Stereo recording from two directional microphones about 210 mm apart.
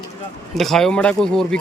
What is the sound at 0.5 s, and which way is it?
Speech, centre (ahead or behind).